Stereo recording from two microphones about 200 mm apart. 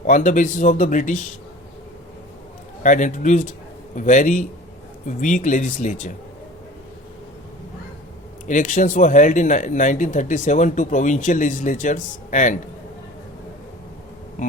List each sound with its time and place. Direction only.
0.0 s speech: 40° left (ahead or behind)
2.8 s speech: 40° left (ahead or behind)
8.4 s speech: 40° left (ahead or behind)